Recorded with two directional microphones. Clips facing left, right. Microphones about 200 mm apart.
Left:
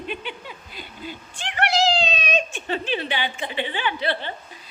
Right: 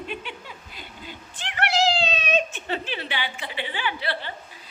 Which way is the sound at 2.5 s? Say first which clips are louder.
Left 4 dB; 15° left (ahead or behind).